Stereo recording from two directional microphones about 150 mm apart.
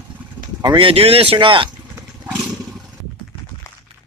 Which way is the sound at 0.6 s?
35° right (ahead or behind).